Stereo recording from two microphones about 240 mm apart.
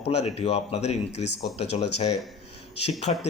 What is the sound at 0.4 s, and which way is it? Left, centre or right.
A man's voice, left.